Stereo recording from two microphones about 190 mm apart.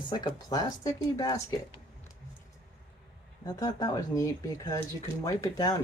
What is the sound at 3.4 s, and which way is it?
Speech, 20° left (ahead or behind).